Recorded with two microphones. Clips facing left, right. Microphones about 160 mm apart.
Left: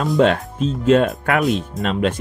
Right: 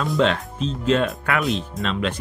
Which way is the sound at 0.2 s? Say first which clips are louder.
Left 5 dB; 50° left (ahead or behind).